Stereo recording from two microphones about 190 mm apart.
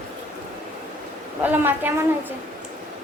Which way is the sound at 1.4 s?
10° right (ahead or behind).